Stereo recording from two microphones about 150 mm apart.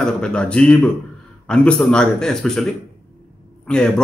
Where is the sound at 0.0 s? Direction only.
5° left (ahead or behind).